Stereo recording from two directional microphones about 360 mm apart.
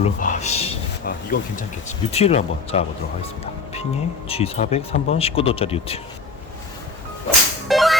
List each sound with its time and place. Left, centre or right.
0.0 s speech: centre
4.3 s speech: centre
7.3 s music: centre